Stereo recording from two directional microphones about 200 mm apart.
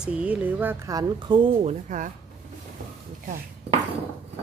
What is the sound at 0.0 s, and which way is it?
Speech, 5° right (ahead or behind).